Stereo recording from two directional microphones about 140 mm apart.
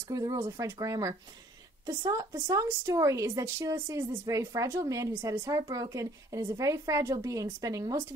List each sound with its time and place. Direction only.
0.1 s a woman's voice: 25° right (ahead or behind)